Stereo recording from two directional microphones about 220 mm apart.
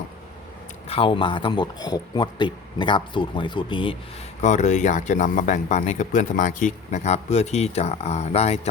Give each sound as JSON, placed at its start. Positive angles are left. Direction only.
{"t": 0.9, "sound": "speech", "side_deg": 25}
{"t": 4.4, "sound": "speech", "side_deg": 35}